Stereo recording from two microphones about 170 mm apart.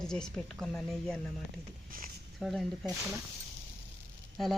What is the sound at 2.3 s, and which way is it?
Speech, centre (ahead or behind).